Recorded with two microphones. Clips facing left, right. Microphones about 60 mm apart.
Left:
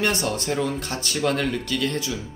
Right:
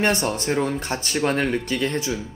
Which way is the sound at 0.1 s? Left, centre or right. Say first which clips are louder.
Right 2 dB; right.